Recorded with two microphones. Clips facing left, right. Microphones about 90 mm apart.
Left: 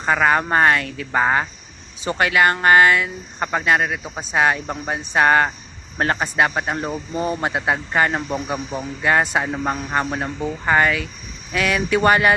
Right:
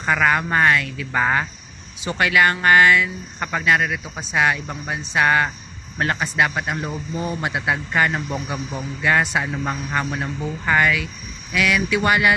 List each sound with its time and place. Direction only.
0.0 s a man's voice: 30° left (ahead or behind)